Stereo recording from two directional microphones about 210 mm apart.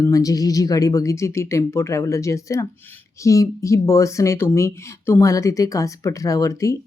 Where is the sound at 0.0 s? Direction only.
15° left (ahead or behind).